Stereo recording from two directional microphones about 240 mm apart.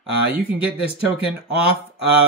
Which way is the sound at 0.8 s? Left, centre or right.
Left.